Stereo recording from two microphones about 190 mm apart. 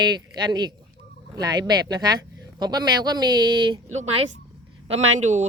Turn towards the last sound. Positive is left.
turn(degrees=-40)  # may be behind; listen again after turning